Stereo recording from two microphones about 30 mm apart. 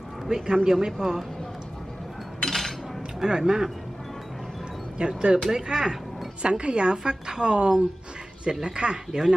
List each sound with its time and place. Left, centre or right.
0.3 s speech: right
2.4 s cutlery: centre
3.2 s speech: right
4.9 s a woman's voice: right
6.4 s a woman's voice: right